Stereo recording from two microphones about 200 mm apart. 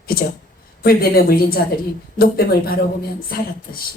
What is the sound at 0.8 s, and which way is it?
Speech, 50° left (ahead or behind).